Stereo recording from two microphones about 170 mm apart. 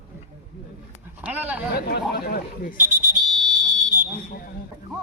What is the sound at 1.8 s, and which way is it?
Speech, 65° left (ahead or behind).